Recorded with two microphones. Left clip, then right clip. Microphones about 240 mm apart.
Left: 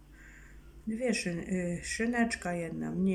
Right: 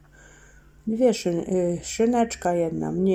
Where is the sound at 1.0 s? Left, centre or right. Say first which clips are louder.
Right 12 dB; centre.